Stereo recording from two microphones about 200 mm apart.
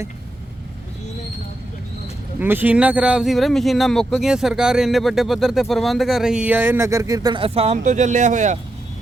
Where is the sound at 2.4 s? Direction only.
10° right (ahead or behind); by 8.6 s 35° right (ahead or behind).